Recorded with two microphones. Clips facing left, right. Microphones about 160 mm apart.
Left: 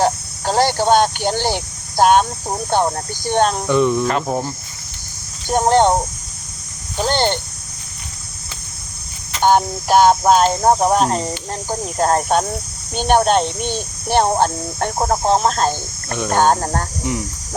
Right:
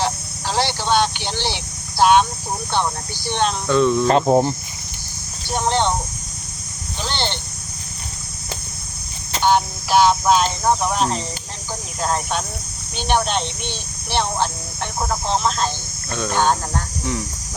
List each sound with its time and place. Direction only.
0.0 s a sound: 45° left (ahead or behind)
2.7 s speech: 45° left (ahead or behind)
3.7 s speech: 15° left (ahead or behind)
4.0 s speech: 25° right (ahead or behind)
5.5 s speech: 45° left (ahead or behind)
9.4 s speech: 45° left (ahead or behind)